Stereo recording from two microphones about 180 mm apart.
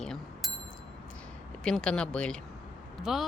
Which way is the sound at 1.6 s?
5° left (ahead or behind).